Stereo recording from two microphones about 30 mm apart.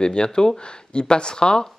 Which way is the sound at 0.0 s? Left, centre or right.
Left.